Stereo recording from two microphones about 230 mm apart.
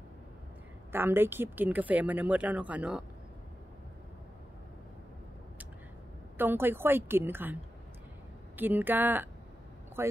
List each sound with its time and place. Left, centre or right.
0.9 s speech: centre
6.3 s speech: centre
8.5 s speech: centre